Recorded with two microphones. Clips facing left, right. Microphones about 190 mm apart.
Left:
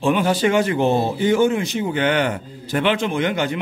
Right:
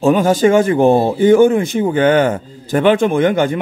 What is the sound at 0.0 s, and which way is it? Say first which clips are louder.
Speech: right 6 dB; 45° right (ahead or behind).